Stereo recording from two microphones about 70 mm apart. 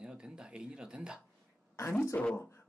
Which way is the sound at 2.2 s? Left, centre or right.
Left.